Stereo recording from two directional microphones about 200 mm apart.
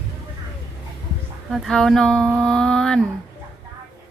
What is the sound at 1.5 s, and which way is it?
A woman's voice, centre (ahead or behind).